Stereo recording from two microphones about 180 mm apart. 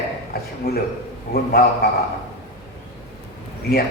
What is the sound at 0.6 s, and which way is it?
Speech, 55° left (ahead or behind).